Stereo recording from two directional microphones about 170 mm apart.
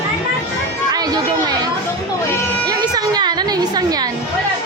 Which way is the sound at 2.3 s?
15° left (ahead or behind).